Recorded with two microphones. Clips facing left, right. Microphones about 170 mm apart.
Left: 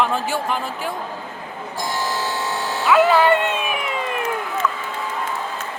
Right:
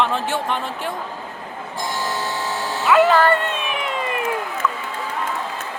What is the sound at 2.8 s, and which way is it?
Music, centre (ahead or behind).